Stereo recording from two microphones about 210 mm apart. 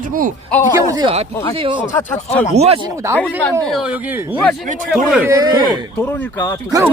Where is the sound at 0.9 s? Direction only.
25° right (ahead or behind).